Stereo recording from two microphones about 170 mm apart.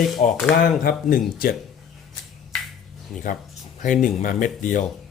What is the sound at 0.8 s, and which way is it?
Speech, 60° left (ahead or behind).